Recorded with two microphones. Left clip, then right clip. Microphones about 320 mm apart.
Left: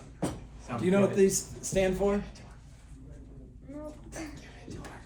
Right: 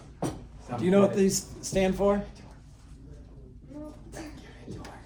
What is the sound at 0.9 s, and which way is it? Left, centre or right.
Speech, right.